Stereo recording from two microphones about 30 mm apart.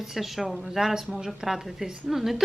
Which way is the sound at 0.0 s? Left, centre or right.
Centre.